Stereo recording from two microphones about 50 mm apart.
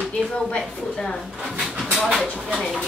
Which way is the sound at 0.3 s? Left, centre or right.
Left.